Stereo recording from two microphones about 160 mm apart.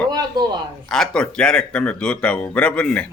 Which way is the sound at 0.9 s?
5° left (ahead or behind).